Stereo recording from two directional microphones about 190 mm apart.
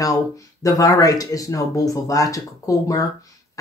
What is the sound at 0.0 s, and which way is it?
Speech, 15° left (ahead or behind).